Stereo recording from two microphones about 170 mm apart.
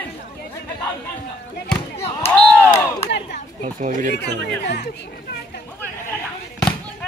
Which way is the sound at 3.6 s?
50° right (ahead or behind).